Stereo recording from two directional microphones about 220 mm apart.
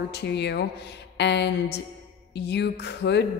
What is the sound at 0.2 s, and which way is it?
A woman's voice, 50° left (ahead or behind).